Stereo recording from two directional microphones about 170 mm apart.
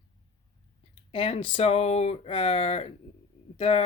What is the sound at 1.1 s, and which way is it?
Speech, 30° left (ahead or behind).